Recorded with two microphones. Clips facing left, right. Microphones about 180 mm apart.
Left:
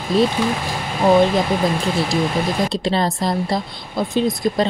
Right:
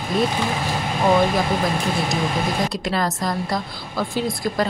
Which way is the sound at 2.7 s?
25° left (ahead or behind).